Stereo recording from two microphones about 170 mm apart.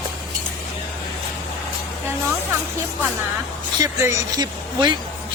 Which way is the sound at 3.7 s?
20° right (ahead or behind).